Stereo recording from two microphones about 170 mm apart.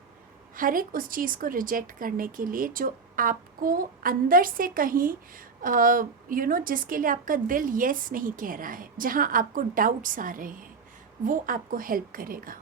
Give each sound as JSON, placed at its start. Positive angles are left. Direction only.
{"t": 0.5, "sound": "speech", "side_deg": -55}